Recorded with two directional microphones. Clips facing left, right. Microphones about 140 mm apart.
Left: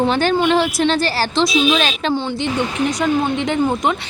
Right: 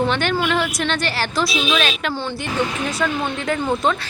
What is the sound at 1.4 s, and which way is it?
Speech, 20° left (ahead or behind).